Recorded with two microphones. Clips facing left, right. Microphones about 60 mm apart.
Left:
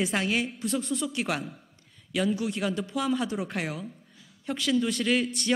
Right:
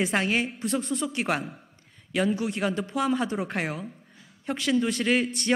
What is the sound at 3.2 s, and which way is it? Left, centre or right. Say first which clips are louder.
Speech: right 2 dB; right.